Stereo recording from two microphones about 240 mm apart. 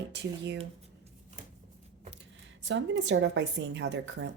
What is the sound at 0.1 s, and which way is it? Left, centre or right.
Speech, right.